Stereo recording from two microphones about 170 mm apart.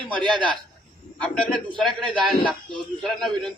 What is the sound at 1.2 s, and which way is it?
A man's voice, 5° left (ahead or behind).